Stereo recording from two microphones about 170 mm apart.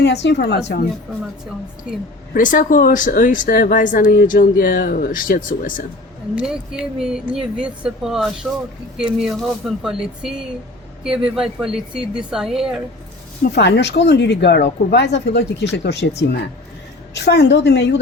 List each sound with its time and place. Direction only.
0.0 s speech: 85° left
2.3 s speech: 50° left (ahead or behind)
6.3 s speech: 5° right (ahead or behind)
13.4 s speech: 75° left (ahead or behind)